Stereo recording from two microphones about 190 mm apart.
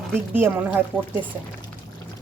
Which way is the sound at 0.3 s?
10° right (ahead or behind).